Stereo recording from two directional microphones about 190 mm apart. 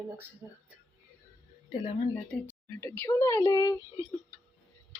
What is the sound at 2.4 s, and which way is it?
Speech, 10° left (ahead or behind).